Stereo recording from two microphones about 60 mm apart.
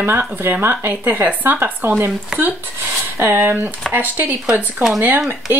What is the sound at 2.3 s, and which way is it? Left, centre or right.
Speech, centre.